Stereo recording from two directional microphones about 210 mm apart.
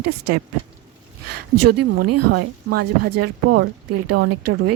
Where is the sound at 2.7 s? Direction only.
50° right (ahead or behind).